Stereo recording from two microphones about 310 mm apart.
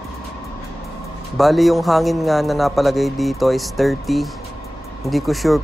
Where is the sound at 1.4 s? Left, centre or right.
Centre.